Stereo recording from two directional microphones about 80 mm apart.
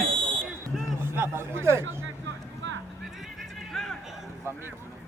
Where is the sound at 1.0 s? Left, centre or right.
Right.